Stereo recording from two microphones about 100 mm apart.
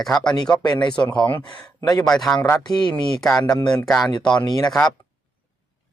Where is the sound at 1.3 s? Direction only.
55° left (ahead or behind).